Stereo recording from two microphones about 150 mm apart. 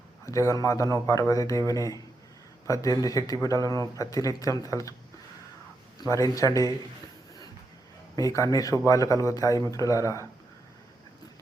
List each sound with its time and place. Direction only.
0.3 s speech: 20° left (ahead or behind)
6.0 s speech: 25° left (ahead or behind)
8.1 s speech: 20° left (ahead or behind)